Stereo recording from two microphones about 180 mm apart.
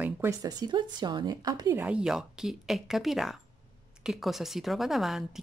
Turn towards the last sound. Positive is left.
turn(degrees=0)  # may be behind; listen again after turning